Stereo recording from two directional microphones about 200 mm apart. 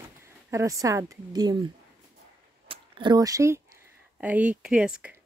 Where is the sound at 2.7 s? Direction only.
25° right (ahead or behind); by 5.1 s 5° right (ahead or behind).